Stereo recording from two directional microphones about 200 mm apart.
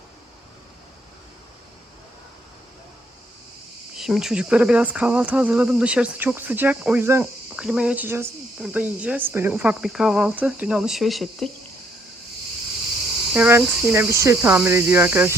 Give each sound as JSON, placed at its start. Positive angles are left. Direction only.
{"t": 3.9, "sound": "speech", "side_deg": 0}
{"t": 13.3, "sound": "speech", "side_deg": -10}